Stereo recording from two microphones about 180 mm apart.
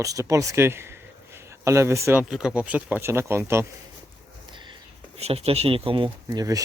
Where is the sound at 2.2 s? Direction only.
5° right (ahead or behind).